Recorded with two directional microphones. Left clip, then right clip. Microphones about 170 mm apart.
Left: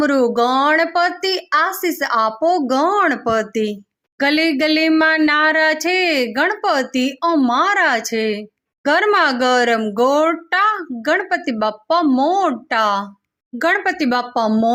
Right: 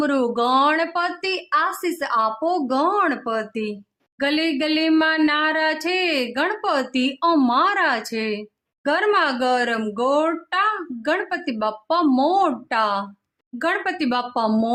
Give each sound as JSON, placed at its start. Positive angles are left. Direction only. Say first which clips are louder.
{"t": 0.0, "sound": "speech", "louder": "left 5 dB", "side_deg": 20}